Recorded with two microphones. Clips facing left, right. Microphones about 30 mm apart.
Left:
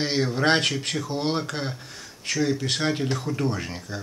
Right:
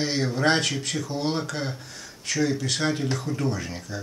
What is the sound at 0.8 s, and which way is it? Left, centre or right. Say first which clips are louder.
Speech: left 1 dB; left.